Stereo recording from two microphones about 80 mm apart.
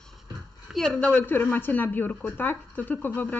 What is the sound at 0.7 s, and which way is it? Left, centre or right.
Speech, centre.